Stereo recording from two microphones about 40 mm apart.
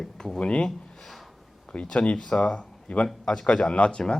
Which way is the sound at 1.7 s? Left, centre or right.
Left.